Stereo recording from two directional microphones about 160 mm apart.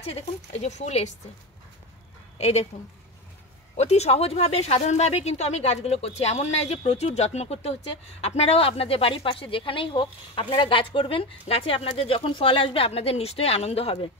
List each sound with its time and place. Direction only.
0.0 s speech: 40° left (ahead or behind)
2.3 s speech: 45° left (ahead or behind)
3.7 s a woman's voice: 45° left (ahead or behind)